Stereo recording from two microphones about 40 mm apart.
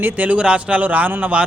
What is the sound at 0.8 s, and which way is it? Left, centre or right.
Speech, right.